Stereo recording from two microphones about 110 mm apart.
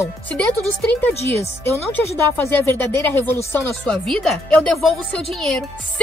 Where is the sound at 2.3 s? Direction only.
20° left (ahead or behind).